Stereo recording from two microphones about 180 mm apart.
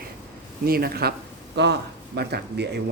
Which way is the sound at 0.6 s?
55° right (ahead or behind).